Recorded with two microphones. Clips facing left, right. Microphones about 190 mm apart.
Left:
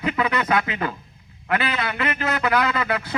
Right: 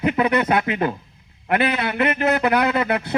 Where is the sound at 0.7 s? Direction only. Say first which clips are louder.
Right 6 dB; 55° right (ahead or behind).